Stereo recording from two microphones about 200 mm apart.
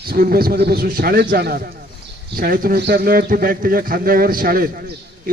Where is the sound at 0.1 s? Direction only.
50° right (ahead or behind).